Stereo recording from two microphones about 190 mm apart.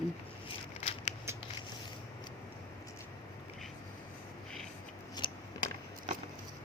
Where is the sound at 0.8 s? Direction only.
35° left (ahead or behind).